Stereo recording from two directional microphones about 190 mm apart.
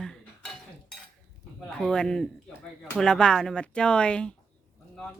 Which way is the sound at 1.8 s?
5° left (ahead or behind).